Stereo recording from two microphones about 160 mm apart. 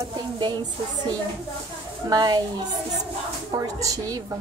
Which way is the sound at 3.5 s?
20° right (ahead or behind).